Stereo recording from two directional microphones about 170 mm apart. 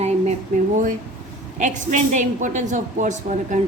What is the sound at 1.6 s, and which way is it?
Speech, 45° right (ahead or behind).